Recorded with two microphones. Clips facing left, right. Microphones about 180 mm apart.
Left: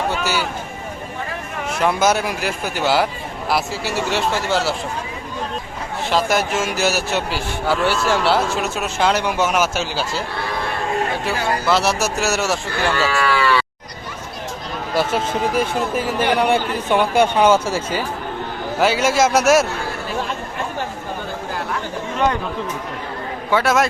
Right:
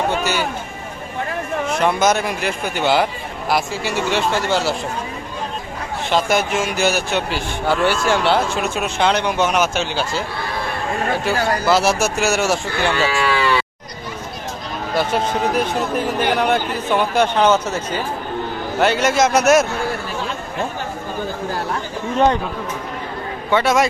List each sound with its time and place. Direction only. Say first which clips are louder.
1.8 s speech: left 1 dB; 5° left (ahead or behind)
6.1 s speech: right 1 dB; centre (ahead or behind)
11.3 s speech: right 3 dB; centre (ahead or behind)
13.0 s speech: left 1 dB; 15° right (ahead or behind)
14.9 s a man's voice: right 1 dB; 5° left (ahead or behind)
23.5 s speech: right 1 dB; 5° left (ahead or behind)